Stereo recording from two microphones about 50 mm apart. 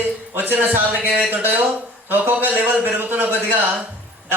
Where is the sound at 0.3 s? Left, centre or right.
Right.